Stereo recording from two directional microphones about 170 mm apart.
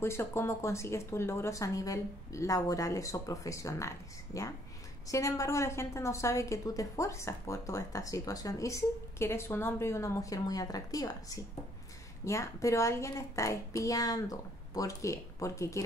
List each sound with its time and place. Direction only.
0.0 s a woman's voice: 15° left (ahead or behind)